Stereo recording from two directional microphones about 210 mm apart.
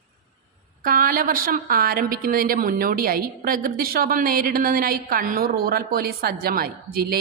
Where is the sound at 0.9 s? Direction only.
40° right (ahead or behind).